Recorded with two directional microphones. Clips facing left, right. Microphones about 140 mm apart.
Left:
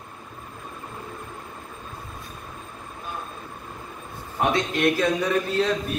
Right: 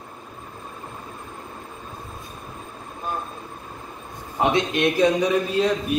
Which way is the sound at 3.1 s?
45° right (ahead or behind).